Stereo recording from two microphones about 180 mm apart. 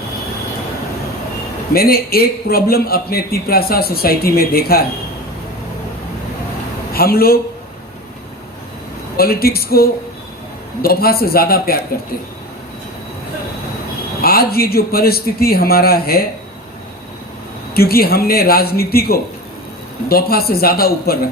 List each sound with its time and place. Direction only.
1.7 s a man's voice: 55° left (ahead or behind)
6.9 s a man's voice: 55° left (ahead or behind)
9.1 s a man's voice: 55° left (ahead or behind)
14.2 s a man's voice: 60° left (ahead or behind)
17.7 s a man's voice: 55° left (ahead or behind)